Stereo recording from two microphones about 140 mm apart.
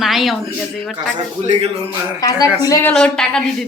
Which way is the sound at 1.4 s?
50° right (ahead or behind).